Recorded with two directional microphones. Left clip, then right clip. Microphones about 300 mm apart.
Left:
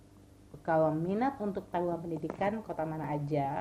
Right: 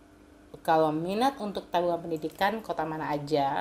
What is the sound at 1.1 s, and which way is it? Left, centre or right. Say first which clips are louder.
A woman's voice: right 5 dB; centre.